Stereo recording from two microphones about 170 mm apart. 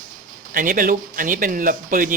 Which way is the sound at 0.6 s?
55° right (ahead or behind).